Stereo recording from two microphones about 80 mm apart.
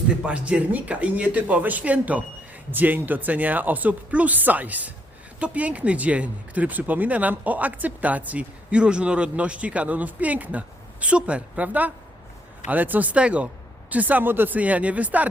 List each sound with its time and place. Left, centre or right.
0.2 s speech: centre